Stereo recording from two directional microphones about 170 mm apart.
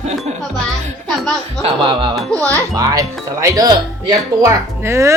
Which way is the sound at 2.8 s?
20° right (ahead or behind).